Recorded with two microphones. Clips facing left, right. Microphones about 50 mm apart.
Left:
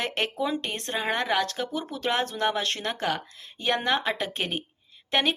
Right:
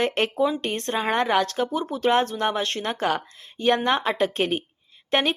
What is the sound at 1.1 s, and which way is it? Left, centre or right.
Speech, centre.